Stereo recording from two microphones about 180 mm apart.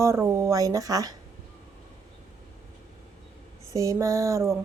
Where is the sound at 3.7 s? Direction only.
20° right (ahead or behind).